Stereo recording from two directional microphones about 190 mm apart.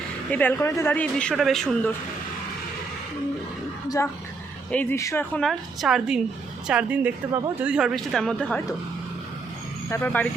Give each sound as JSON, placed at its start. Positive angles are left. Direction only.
{"t": 0.3, "sound": "speech", "side_deg": 10}
{"t": 3.8, "sound": "speech", "side_deg": 15}
{"t": 9.9, "sound": "speech", "side_deg": 10}